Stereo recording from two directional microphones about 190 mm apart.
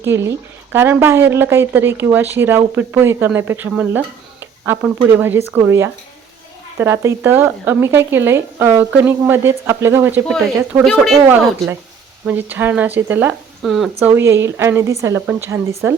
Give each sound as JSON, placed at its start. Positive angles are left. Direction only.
{"t": 0.2, "sound": "speech", "side_deg": -15}
{"t": 12.2, "sound": "speech", "side_deg": -10}
{"t": 14.0, "sound": "speech", "side_deg": -10}